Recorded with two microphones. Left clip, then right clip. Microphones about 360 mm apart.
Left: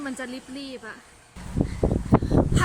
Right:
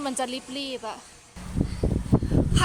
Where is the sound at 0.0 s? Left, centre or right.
Centre.